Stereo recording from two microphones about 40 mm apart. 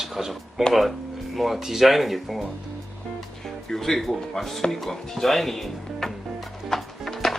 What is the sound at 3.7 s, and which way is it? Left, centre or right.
Speech, centre.